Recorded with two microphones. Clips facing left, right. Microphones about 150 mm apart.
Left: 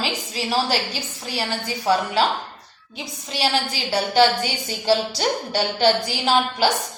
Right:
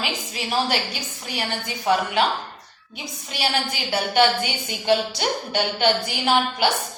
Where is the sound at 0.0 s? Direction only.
35° left (ahead or behind).